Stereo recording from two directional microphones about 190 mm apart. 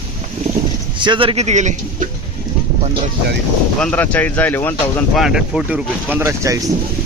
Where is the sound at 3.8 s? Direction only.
5° left (ahead or behind).